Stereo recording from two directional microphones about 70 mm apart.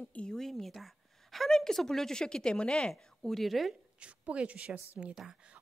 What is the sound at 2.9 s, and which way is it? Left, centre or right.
Speech, centre.